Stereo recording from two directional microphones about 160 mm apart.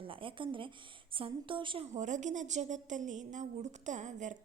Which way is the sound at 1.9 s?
50° right (ahead or behind).